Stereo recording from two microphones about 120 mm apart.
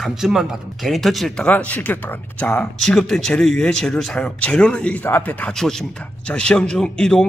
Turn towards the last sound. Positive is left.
turn(degrees=5)  # may be behind; listen again after turning